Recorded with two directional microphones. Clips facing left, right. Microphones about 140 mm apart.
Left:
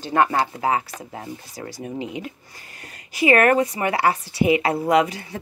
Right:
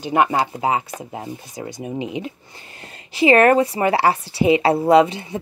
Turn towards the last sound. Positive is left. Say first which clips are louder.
# right 5 dB
turn(degrees=-25)  # may be behind; listen again after turning